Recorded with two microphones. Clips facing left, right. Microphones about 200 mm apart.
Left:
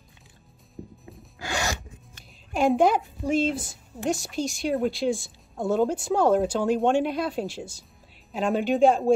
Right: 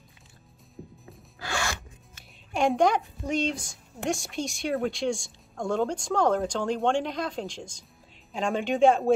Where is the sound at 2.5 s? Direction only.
Centre (ahead or behind).